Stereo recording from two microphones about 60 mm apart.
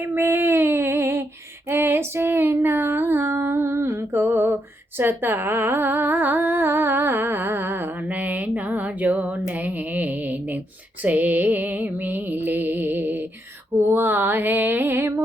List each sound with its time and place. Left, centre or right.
0.0 s female singing: right
4.9 s humming: right
9.5 s music: right